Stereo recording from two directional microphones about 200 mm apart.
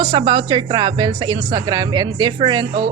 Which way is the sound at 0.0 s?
25° right (ahead or behind).